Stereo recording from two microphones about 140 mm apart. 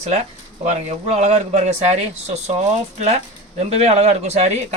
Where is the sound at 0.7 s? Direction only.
55° right (ahead or behind).